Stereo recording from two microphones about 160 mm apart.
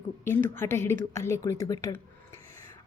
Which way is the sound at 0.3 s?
15° left (ahead or behind).